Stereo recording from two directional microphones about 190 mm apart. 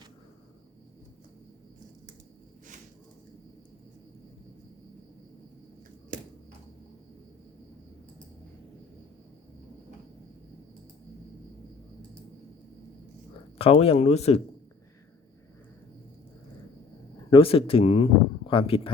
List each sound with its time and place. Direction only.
6.1 s a sound: 45° right (ahead or behind)
13.6 s speech: 30° left (ahead or behind)
17.2 s speech: 30° left (ahead or behind)